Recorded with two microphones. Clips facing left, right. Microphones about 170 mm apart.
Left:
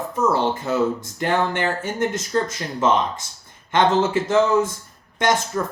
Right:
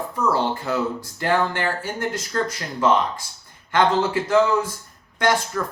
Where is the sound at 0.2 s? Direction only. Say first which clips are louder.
Left 2 dB; 20° left (ahead or behind).